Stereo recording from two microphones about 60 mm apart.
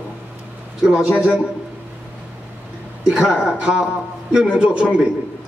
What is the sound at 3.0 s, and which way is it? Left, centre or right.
Speech, centre.